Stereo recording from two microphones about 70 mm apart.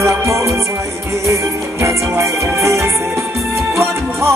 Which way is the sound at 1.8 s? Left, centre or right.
Right.